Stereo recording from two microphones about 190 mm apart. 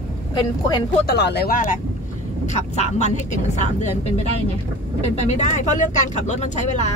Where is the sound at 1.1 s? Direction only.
60° left (ahead or behind); by 6.9 s 40° left (ahead or behind).